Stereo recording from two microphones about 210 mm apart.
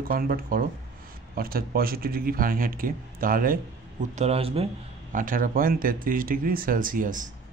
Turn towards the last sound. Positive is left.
turn(degrees=-40)  # may be behind; listen again after turning